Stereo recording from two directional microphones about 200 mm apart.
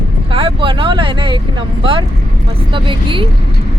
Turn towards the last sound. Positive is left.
turn(degrees=-25)  # may be behind; listen again after turning